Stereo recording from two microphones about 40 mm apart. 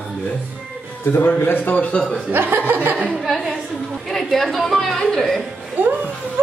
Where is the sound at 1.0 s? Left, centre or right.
Left.